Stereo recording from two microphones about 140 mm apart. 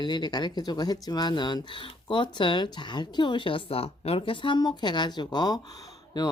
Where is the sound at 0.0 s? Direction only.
30° left (ahead or behind).